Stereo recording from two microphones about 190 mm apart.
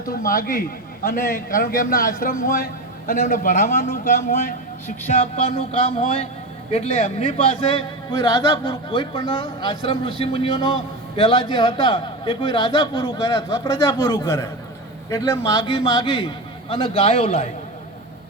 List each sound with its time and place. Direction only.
0.0 s a man's voice: 45° left (ahead or behind)